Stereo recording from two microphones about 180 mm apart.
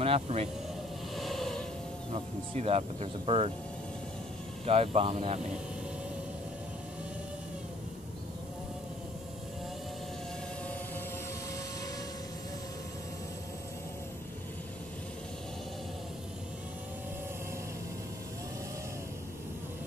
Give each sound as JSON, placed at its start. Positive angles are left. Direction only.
{"t": 0.0, "sound": "speech", "side_deg": -35}
{"t": 1.1, "sound": "a sound", "side_deg": 0}
{"t": 2.5, "sound": "speech", "side_deg": -35}
{"t": 4.6, "sound": "speech", "side_deg": -35}